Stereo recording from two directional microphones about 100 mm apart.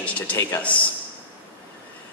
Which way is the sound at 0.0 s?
15° left (ahead or behind).